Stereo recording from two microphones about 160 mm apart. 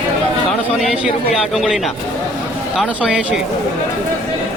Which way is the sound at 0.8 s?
5° right (ahead or behind).